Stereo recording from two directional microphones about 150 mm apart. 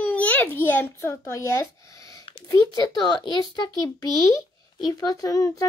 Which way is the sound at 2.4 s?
20° left (ahead or behind).